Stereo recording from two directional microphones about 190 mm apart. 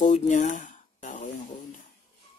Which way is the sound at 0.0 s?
40° left (ahead or behind).